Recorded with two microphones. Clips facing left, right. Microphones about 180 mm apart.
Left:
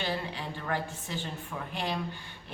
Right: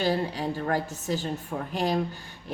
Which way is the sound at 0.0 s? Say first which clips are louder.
Right 8 dB; 40° right (ahead or behind).